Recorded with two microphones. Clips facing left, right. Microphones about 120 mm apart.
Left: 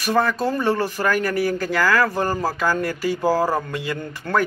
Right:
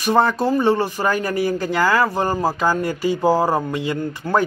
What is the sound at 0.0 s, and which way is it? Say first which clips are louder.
Speech: right 3 dB; 25° right (ahead or behind).